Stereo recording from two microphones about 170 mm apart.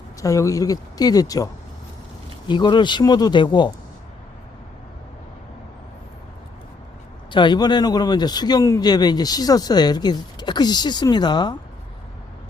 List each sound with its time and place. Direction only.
0.2 s speech: 20° left (ahead or behind)
2.5 s speech: 25° left (ahead or behind)
7.3 s speech: 25° left (ahead or behind)